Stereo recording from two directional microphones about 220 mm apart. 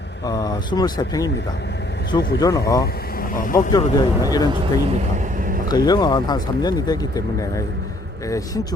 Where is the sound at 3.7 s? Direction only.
15° left (ahead or behind).